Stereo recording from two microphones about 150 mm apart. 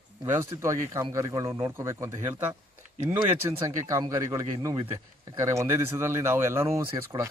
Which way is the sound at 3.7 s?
20° right (ahead or behind).